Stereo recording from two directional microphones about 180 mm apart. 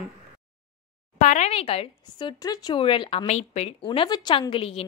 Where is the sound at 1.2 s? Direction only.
40° left (ahead or behind).